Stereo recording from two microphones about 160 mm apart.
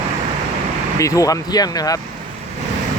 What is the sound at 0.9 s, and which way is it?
Speech, 20° left (ahead or behind).